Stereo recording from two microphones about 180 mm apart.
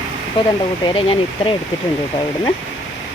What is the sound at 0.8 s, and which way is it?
Speech, 25° left (ahead or behind).